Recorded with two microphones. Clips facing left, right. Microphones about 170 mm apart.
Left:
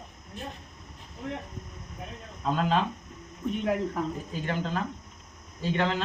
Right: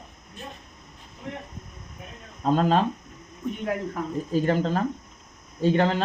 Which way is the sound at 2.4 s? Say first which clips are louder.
Right 5 dB; 35° right (ahead or behind).